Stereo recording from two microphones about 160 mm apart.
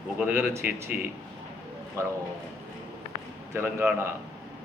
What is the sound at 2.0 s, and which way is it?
Speech, 15° right (ahead or behind).